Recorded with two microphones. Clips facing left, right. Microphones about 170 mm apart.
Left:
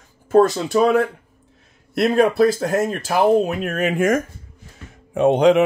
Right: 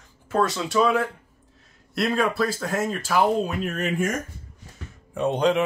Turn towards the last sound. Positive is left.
turn(degrees=75)  # may be behind; listen again after turning